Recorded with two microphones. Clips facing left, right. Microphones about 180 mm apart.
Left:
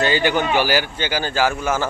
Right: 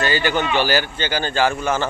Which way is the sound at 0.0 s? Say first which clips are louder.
Left 2 dB; 15° left (ahead or behind).